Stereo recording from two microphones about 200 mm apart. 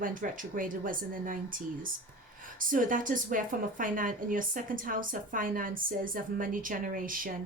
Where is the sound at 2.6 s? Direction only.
40° right (ahead or behind).